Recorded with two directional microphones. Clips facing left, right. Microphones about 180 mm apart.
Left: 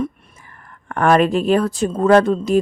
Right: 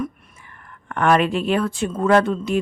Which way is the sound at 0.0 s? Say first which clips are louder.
Left 3 dB; 40° left (ahead or behind).